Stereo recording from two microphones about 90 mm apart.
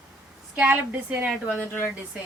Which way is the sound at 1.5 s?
20° left (ahead or behind).